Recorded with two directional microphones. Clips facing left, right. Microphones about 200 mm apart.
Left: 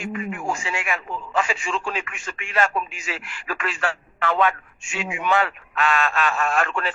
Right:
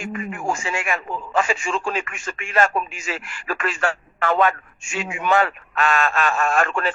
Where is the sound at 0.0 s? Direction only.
45° right (ahead or behind).